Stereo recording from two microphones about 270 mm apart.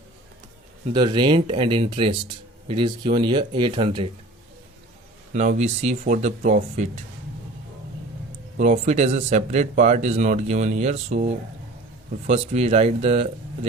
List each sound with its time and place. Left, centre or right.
0.9 s speech: centre
5.3 s speech: right
8.5 s speech: right
12.3 s speech: right